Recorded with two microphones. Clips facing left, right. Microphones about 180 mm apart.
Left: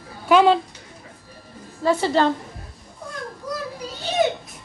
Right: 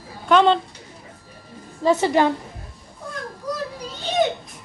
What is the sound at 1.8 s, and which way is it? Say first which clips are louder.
Speech: right 1 dB; 15° right (ahead or behind).